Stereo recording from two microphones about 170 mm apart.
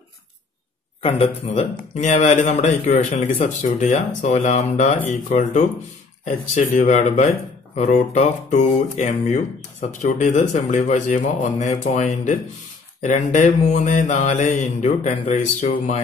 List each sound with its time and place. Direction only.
1.0 s speech: 35° left (ahead or behind)